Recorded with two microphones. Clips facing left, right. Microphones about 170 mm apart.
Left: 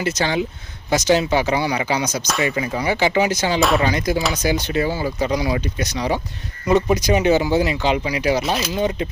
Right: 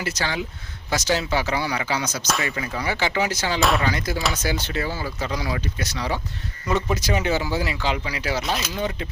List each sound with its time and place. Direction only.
0.0 s speech: 20° left (ahead or behind)
3.6 s speech: centre (ahead or behind)
3.8 s speech: 15° left (ahead or behind)